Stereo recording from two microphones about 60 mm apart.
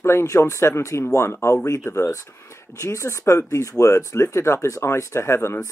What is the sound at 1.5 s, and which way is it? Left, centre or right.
Speech, left.